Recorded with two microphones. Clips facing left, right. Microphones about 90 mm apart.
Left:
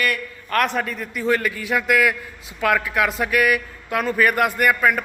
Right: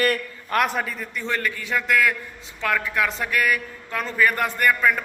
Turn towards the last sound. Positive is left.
turn(degrees=10)  # may be behind; listen again after turning